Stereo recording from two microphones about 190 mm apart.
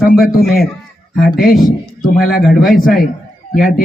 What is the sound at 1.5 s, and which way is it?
A man's voice, 45° left (ahead or behind).